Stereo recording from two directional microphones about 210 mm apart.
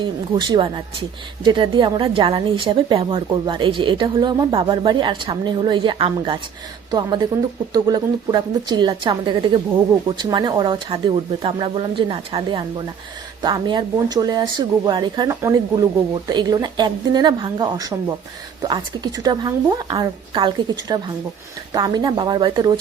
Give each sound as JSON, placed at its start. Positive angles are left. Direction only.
{"t": 0.0, "sound": "a woman's voice", "side_deg": -20}